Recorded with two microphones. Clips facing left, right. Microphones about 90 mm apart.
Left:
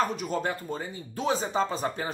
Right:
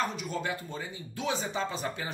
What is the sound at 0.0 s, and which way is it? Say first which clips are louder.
Speech: left 5 dB; 45° left (ahead or behind).